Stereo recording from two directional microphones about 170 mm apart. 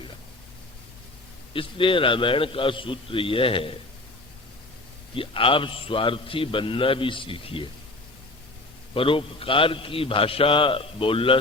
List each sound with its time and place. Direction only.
1.5 s a man's voice: 30° left (ahead or behind)
5.1 s a man's voice: 30° left (ahead or behind)
9.0 s a man's voice: 30° left (ahead or behind)